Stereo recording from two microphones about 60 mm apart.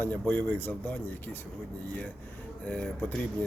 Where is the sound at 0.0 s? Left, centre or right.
Left.